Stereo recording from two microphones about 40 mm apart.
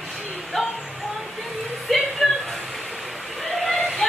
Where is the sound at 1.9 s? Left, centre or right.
Centre.